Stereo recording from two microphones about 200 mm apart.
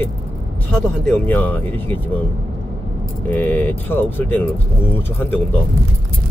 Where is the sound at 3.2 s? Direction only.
10° left (ahead or behind).